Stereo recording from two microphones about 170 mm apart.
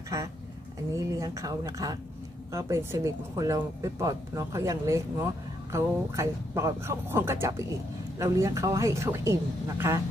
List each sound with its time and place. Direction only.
0.9 s speech: 20° right (ahead or behind)